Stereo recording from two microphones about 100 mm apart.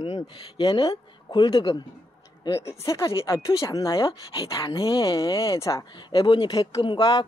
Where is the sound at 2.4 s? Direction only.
35° left (ahead or behind); by 5.1 s 55° left (ahead or behind).